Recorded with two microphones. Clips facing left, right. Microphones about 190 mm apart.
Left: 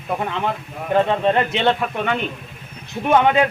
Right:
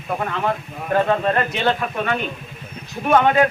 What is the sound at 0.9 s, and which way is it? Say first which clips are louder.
A man's voice: left 1 dB; 20° left (ahead or behind).